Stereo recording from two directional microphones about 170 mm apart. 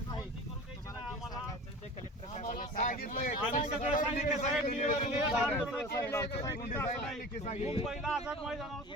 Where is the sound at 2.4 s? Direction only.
50° left (ahead or behind).